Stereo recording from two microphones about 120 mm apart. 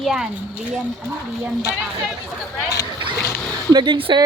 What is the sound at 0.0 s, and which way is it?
Speech, 5° right (ahead or behind).